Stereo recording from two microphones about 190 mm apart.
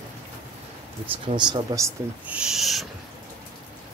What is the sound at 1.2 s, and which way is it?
Owl, 25° right (ahead or behind).